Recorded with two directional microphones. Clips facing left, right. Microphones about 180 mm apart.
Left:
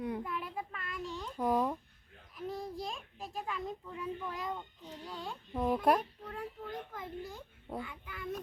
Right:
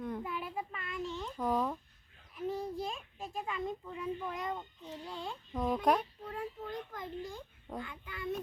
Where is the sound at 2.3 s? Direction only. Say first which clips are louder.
Right 3 dB; centre (ahead or behind).